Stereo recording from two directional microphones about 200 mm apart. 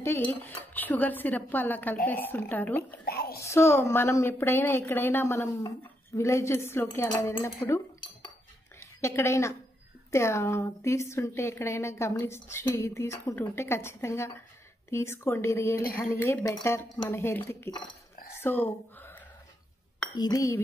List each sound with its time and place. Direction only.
0.0 s a woman's voice: 10° left (ahead or behind)
3.1 s a sound: 50° left (ahead or behind)
3.4 s a woman's voice: 10° left (ahead or behind)
7.6 s cutlery: 15° left (ahead or behind)
8.7 s a woman's voice: 15° left (ahead or behind)
18.3 s a sound: 10° left (ahead or behind)
20.2 s a woman's voice: 20° left (ahead or behind)